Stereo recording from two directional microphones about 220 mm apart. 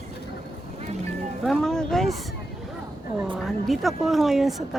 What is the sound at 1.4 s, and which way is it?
Music, centre (ahead or behind).